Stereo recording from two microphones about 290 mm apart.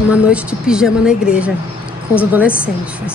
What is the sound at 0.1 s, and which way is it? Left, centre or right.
A woman's voice, centre.